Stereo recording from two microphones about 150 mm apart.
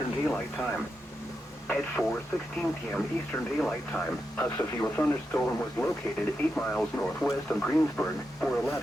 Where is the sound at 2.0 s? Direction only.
Centre (ahead or behind).